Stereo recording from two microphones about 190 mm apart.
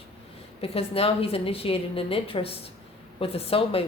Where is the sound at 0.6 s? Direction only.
30° left (ahead or behind).